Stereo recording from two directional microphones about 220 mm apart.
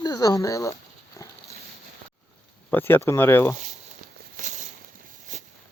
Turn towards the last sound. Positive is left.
turn(degrees=-35)  # may be behind; listen again after turning